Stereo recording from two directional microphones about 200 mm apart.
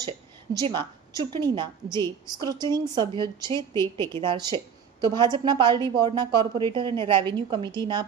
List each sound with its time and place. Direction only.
0.5 s a woman's voice: 20° right (ahead or behind)